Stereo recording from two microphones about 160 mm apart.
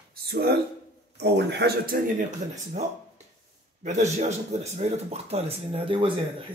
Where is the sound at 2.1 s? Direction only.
50° right (ahead or behind).